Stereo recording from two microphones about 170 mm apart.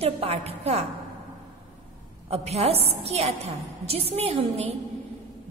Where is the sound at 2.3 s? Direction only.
35° right (ahead or behind).